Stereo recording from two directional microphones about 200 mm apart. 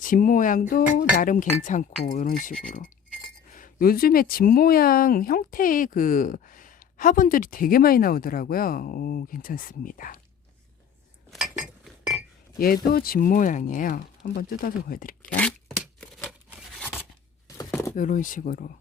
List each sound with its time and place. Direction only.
0.0 s speech: 40° left (ahead or behind)
11.3 s cutlery: centre (ahead or behind)
12.5 s speech: 50° left (ahead or behind)
15.4 s a sound: 5° left (ahead or behind)
16.7 s scissors: 5° left (ahead or behind)
17.6 s a sound: 15° left (ahead or behind)
17.9 s speech: 40° left (ahead or behind)